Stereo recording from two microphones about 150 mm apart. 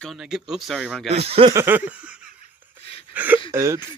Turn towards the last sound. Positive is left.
turn(degrees=-20)  # may be behind; listen again after turning